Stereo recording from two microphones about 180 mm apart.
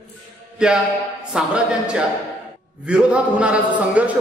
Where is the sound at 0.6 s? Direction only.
5° right (ahead or behind).